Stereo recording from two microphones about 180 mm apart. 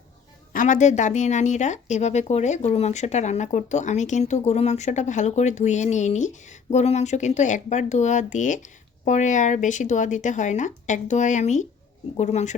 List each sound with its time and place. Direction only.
0.5 s a woman's voice: 45° left (ahead or behind)